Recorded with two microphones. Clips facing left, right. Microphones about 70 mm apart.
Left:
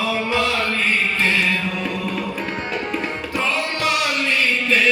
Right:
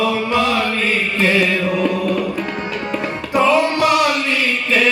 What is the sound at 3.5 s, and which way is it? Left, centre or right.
Music, centre.